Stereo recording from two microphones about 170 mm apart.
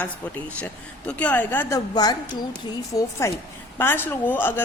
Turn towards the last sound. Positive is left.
turn(degrees=10)  # may be behind; listen again after turning